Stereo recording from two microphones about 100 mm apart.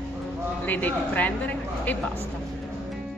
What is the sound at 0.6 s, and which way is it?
A woman's voice, 15° left (ahead or behind).